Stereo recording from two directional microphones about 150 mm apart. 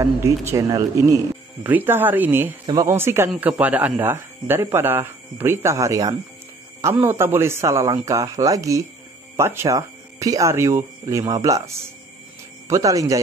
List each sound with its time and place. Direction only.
0.0 s speech: 20° right (ahead or behind)
1.6 s speech: 10° right (ahead or behind)
2.6 s speech: 25° right (ahead or behind)